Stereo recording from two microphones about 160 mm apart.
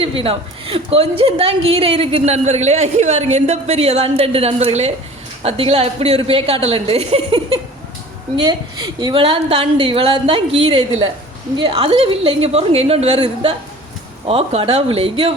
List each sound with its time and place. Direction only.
0.0 s a woman's voice: 35° right (ahead or behind)
8.4 s a woman's voice: 25° right (ahead or behind)